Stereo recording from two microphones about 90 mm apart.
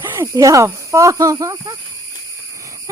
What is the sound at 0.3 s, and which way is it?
Speech, 35° right (ahead or behind).